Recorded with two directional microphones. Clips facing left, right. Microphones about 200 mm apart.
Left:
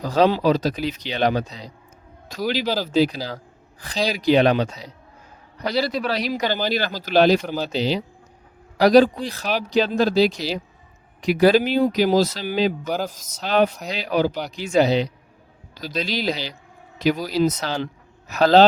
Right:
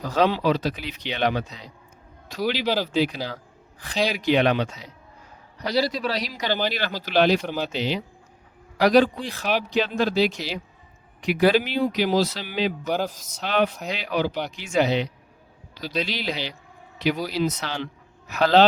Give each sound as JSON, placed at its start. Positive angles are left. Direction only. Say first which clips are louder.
{"t": 0.0, "sound": "a man's voice", "louder": "left 4 dB", "side_deg": 35}
{"t": 5.5, "sound": "a man's voice", "louder": "left 1 dB", "side_deg": 55}
{"t": 6.7, "sound": "a man's voice", "louder": "left 4 dB", "side_deg": 40}
{"t": 12.9, "sound": "speech", "louder": "even", "side_deg": 0}
{"t": 13.2, "sound": "a man's voice", "louder": "left 7 dB", "side_deg": 40}